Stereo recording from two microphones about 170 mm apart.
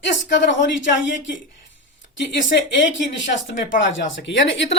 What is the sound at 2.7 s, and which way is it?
A woman's voice, 90° left.